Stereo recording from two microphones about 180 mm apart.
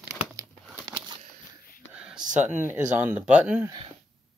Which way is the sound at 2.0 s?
5° right (ahead or behind).